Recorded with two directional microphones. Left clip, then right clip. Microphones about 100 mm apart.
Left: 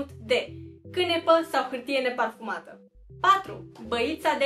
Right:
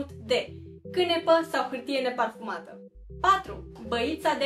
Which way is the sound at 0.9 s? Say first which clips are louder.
Left 1 dB; 10° right (ahead or behind).